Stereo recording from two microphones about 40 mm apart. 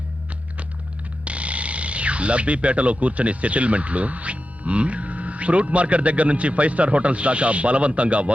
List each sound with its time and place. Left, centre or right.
1.2 s speech: right